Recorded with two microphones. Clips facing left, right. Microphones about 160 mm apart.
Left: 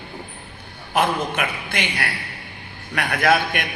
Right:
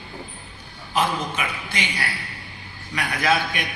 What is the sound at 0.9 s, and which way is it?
A man's voice, 55° left (ahead or behind).